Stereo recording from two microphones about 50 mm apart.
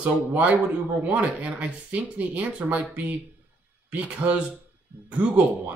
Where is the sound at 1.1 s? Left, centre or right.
Right.